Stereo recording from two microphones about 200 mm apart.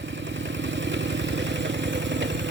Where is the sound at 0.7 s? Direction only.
65° right (ahead or behind).